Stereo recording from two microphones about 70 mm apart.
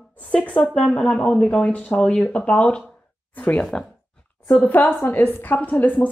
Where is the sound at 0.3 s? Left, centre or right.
Centre.